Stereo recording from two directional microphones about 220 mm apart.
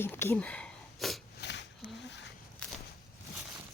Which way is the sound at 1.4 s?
55° left (ahead or behind).